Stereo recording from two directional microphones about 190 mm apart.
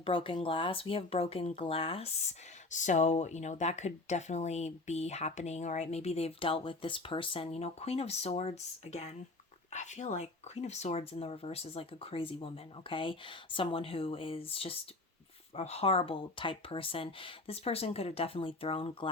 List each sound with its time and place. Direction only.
0.0 s speech: 25° left (ahead or behind)
2.6 s speech: 40° left (ahead or behind)